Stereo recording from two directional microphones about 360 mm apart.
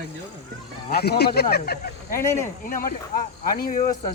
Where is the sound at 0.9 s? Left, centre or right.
Left.